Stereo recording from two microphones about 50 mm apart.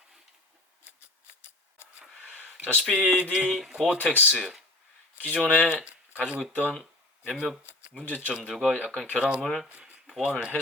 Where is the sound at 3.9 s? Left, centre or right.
Right.